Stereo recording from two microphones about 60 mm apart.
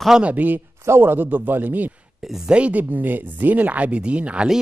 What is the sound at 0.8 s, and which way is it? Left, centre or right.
A man's voice, right.